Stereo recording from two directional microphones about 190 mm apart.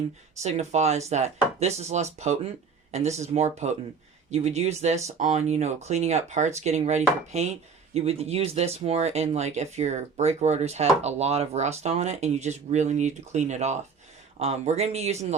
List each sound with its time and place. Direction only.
0.4 s speech: 35° right (ahead or behind)